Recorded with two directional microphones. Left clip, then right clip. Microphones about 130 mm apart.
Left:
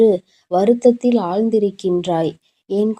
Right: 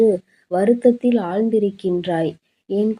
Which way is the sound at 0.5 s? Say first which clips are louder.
Left 2 dB; 30° left (ahead or behind).